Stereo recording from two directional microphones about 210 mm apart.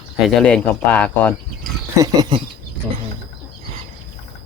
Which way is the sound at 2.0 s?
20° right (ahead or behind).